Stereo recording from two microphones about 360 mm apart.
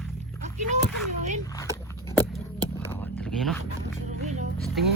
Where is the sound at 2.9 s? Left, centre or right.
Centre.